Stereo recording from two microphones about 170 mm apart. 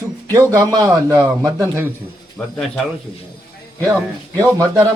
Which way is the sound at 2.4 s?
10° left (ahead or behind).